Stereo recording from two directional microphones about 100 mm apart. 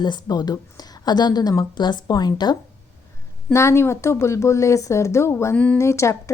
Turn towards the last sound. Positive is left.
turn(degrees=30)  # may be behind; listen again after turning